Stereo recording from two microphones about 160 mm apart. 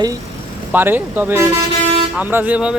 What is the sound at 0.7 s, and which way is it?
Speech, 10° right (ahead or behind).